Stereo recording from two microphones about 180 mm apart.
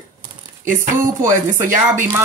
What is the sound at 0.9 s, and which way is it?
Speech, 15° right (ahead or behind).